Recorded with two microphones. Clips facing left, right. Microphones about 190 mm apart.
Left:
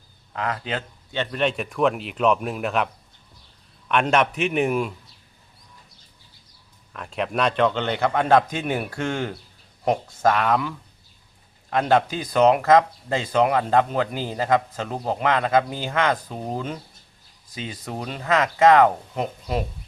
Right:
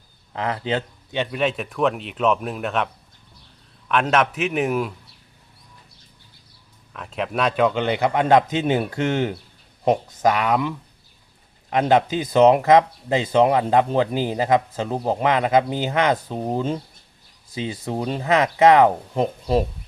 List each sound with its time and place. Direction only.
0.3 s speech: 25° right (ahead or behind)
1.2 s speech: 5° right (ahead or behind)
6.9 s a man's voice: centre (ahead or behind); by 19.6 s 30° right (ahead or behind)